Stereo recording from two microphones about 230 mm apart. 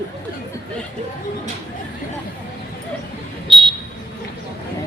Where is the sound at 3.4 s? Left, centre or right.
Right.